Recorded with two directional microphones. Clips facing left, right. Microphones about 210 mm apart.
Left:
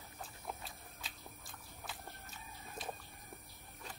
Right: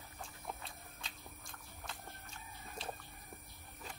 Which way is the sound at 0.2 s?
Centre (ahead or behind).